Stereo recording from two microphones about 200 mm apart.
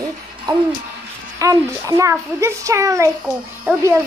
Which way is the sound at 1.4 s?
15° right (ahead or behind).